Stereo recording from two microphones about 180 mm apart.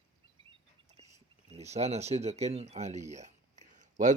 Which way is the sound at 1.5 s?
35° right (ahead or behind).